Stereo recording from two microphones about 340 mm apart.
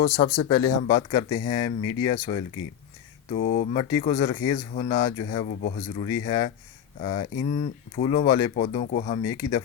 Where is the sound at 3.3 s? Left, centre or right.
Left.